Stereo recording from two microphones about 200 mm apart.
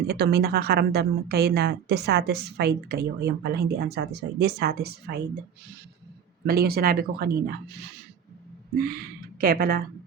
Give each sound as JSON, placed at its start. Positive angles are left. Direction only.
{"t": 0.1, "sound": "a woman's voice", "side_deg": -55}
{"t": 6.4, "sound": "a woman's voice", "side_deg": -50}
{"t": 9.4, "sound": "a woman's voice", "side_deg": -50}